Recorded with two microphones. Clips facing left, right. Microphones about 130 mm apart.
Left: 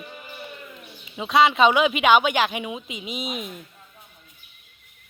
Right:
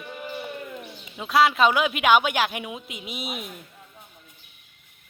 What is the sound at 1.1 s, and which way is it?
Speech, centre (ahead or behind).